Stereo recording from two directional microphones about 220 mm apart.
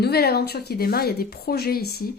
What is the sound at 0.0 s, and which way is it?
Speech, 45° left (ahead or behind).